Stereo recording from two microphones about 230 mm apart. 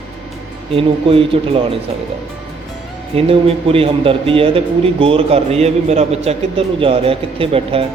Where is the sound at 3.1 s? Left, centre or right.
Right.